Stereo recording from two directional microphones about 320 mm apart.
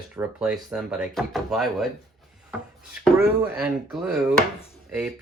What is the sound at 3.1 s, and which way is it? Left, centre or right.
Speech, centre.